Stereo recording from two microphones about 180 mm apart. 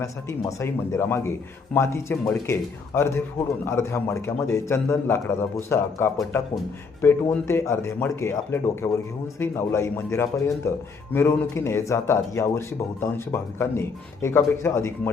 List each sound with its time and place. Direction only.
0.0 s speech: 15° left (ahead or behind)